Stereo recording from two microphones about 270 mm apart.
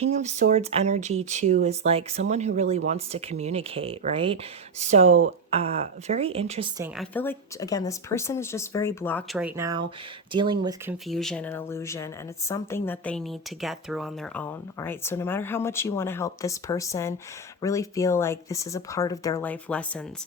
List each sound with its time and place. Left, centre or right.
0.0 s speech: right
6.7 s speech: centre
9.4 s speech: centre
11.1 s speech: centre